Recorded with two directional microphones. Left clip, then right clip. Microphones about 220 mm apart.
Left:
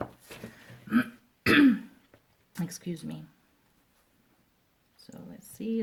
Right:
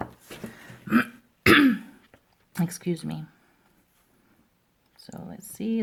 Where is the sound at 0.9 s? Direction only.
40° right (ahead or behind).